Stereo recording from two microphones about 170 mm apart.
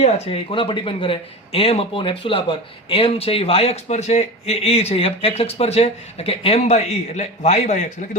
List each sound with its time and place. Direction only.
0.0 s speech: 35° left (ahead or behind)